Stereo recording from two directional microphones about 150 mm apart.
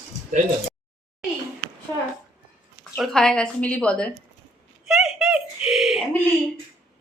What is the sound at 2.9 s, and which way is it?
A woman's voice, centre (ahead or behind).